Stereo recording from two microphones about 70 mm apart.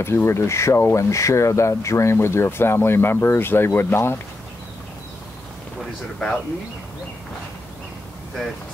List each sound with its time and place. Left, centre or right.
0.0 s speech: left
6.1 s speech: centre